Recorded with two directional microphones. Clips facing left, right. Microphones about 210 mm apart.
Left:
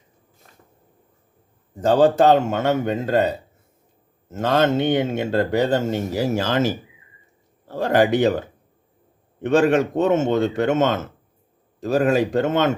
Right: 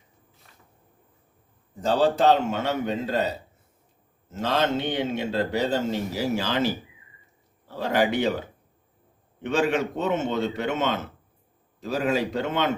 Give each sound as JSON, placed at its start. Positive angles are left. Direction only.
{"t": 0.4, "sound": "a sound", "side_deg": 45}
{"t": 1.8, "sound": "speech", "side_deg": 50}
{"t": 4.3, "sound": "speech", "side_deg": 50}